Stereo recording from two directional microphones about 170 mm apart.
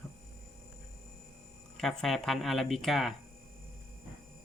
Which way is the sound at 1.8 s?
Centre (ahead or behind).